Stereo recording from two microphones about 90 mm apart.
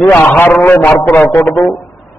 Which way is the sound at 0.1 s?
20° left (ahead or behind).